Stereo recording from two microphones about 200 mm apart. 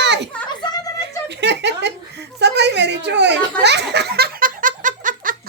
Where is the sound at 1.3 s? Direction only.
60° right (ahead or behind).